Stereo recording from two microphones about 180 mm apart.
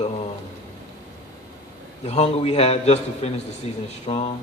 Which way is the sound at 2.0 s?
35° left (ahead or behind).